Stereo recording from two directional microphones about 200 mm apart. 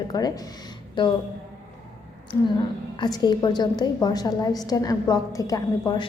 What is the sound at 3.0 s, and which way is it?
A woman's voice, 20° left (ahead or behind).